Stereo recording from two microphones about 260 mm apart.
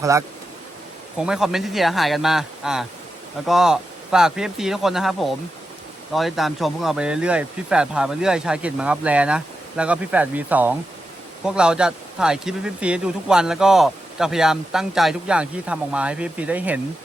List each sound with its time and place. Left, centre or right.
0.0 s speech: centre